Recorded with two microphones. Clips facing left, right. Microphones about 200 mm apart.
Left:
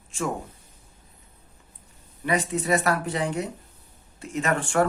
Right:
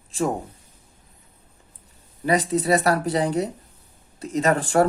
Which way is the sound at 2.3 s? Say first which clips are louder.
Right 4 dB; 35° right (ahead or behind).